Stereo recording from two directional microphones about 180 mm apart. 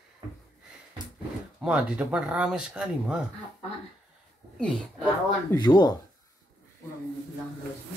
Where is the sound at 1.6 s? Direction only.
5° right (ahead or behind).